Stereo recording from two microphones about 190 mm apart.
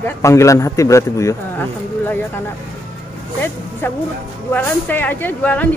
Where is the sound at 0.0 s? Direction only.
15° left (ahead or behind).